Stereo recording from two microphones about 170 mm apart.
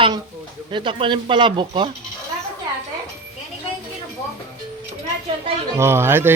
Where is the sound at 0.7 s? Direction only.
30° right (ahead or behind).